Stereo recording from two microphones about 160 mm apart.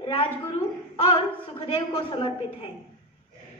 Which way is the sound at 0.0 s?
35° left (ahead or behind).